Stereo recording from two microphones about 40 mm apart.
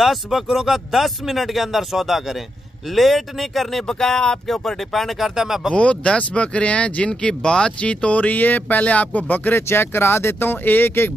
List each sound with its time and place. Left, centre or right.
0.0 s speech: centre
3.8 s speech: centre
5.2 s speech: centre
5.7 s speech: left
8.4 s speech: left
9.5 s speech: left